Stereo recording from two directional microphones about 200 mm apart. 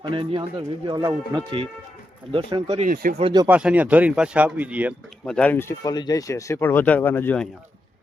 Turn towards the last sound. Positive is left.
turn(degrees=10)  # may be behind; listen again after turning